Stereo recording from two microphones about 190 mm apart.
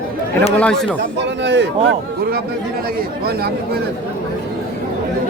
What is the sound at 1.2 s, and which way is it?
Speech, 65° right (ahead or behind).